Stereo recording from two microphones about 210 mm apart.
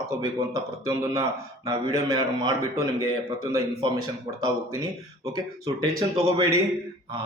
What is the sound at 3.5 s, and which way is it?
A man's voice, 15° right (ahead or behind).